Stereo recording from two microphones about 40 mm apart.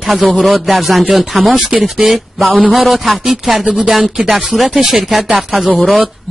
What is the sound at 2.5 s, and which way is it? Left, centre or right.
Speech, right.